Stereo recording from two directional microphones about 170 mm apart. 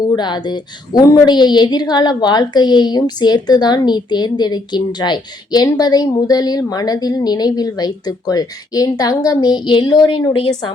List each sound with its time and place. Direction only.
0.0 s speech: 25° left (ahead or behind)